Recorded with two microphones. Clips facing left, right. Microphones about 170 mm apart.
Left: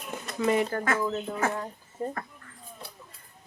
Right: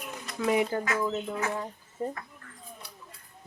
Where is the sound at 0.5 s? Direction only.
15° right (ahead or behind).